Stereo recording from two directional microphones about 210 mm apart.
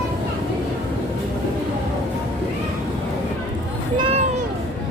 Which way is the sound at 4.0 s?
30° right (ahead or behind).